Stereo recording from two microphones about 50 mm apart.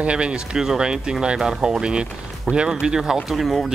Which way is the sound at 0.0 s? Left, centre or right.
Right.